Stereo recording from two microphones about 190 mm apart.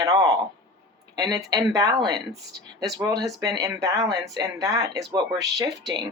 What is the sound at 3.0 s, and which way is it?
Speech, 20° right (ahead or behind).